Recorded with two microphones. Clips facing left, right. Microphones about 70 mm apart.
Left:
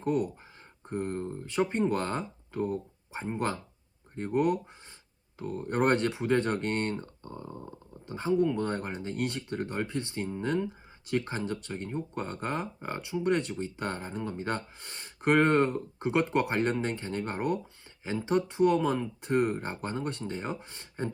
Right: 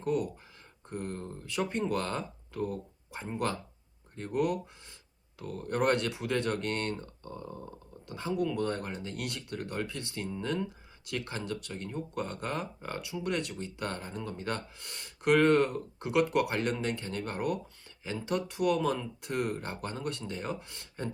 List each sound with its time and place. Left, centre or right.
0.0 s speech: left